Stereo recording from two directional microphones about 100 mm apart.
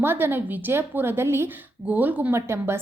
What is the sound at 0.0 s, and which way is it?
A woman's voice, 20° right (ahead or behind).